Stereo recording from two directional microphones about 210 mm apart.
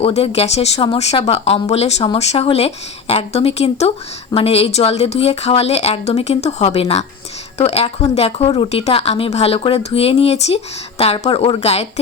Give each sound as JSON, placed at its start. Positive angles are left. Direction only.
{"t": 0.0, "sound": "speech", "side_deg": 30}